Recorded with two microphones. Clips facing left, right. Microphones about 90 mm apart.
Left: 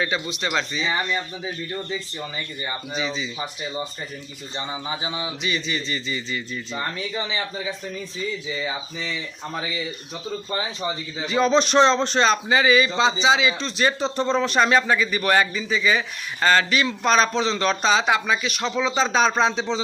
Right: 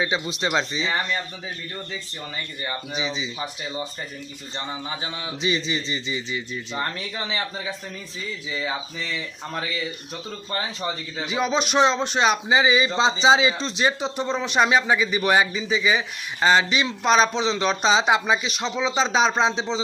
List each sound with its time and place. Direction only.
0.3 s speech: 25° right (ahead or behind)
2.9 s a man's voice: 15° right (ahead or behind)
4.5 s a man's voice: 10° left (ahead or behind)
5.4 s speech: 30° right (ahead or behind)
8.5 s speech: centre (ahead or behind)
10.6 s speech: 5° left (ahead or behind)
11.3 s a man's voice: 10° right (ahead or behind); by 13.8 s 30° right (ahead or behind)
13.8 s a man's voice: 15° right (ahead or behind)